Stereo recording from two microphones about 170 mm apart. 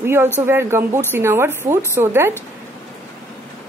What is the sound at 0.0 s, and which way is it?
Speech, 15° right (ahead or behind).